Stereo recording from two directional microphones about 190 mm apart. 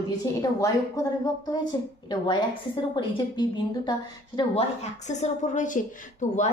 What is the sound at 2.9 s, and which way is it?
A woman's voice, 25° left (ahead or behind).